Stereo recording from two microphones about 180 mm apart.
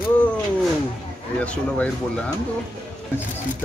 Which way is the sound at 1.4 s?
5° left (ahead or behind).